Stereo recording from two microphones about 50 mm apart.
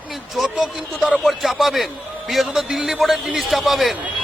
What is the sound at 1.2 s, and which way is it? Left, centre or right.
Speech, centre.